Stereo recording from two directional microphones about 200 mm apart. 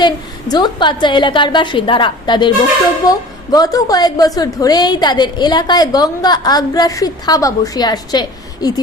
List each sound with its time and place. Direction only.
0.0 s a woman's voice: 20° left (ahead or behind)